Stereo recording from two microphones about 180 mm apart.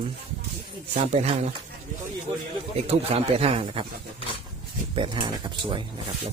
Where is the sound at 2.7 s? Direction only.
35° right (ahead or behind).